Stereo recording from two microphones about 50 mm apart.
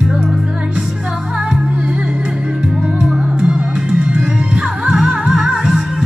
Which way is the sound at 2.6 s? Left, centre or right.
Centre.